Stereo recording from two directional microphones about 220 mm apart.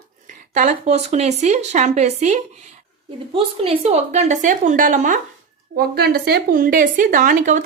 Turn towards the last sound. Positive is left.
turn(degrees=-35)  # may be behind; listen again after turning